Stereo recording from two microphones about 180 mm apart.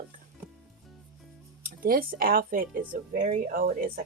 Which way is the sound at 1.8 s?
50° right (ahead or behind).